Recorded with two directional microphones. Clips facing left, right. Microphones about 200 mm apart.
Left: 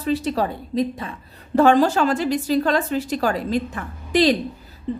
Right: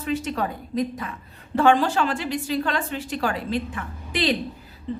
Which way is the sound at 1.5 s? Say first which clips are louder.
Left 4 dB; 40° left (ahead or behind).